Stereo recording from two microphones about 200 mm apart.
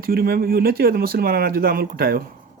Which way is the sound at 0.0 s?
50° right (ahead or behind).